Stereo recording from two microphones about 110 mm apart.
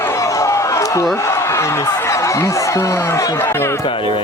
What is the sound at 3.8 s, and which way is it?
Speech, 50° left (ahead or behind).